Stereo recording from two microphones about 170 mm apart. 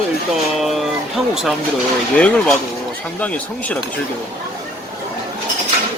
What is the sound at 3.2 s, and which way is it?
Speech, 10° left (ahead or behind).